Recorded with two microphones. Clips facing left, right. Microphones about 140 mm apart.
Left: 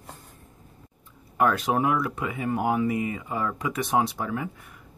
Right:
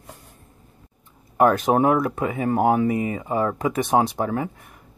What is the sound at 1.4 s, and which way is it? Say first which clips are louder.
Speech: right 6 dB; 45° right (ahead or behind).